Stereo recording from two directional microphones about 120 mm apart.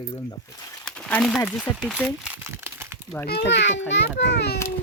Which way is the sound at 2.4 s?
20° right (ahead or behind).